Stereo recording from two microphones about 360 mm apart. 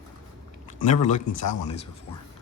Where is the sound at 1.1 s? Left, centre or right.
Centre.